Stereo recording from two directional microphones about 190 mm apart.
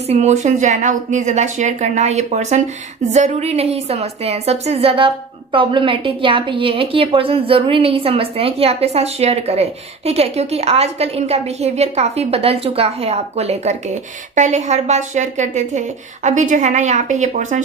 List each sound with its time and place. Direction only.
0.1 s a woman's voice: 35° right (ahead or behind)